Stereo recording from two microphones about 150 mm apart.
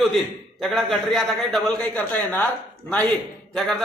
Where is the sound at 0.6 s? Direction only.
Centre (ahead or behind).